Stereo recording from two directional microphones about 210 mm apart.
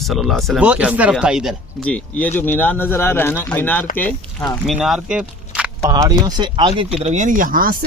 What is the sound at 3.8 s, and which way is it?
Speech, 40° left (ahead or behind).